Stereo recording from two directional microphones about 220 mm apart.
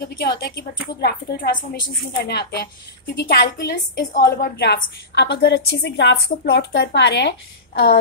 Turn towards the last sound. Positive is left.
turn(degrees=45)  # may be behind; listen again after turning